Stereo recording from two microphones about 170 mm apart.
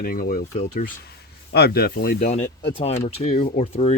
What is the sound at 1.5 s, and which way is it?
Speech, 70° left (ahead or behind).